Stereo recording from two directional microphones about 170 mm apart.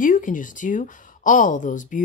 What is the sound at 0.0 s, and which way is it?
A woman's voice, 50° left (ahead or behind).